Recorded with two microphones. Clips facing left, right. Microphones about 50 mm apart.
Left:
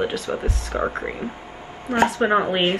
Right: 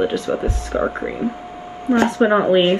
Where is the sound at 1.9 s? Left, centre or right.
Left.